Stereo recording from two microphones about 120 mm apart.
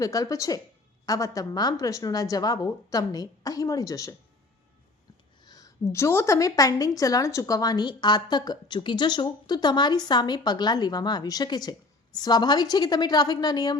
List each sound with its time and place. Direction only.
0.0 s a woman's voice: 30° left (ahead or behind)
5.5 s a woman's voice: 30° left (ahead or behind)